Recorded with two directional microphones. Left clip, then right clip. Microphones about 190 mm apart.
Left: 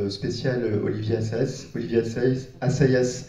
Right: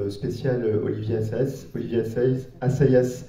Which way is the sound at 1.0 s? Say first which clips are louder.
Even; 55° right (ahead or behind).